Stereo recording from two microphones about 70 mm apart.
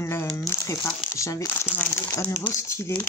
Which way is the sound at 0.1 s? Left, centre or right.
Left.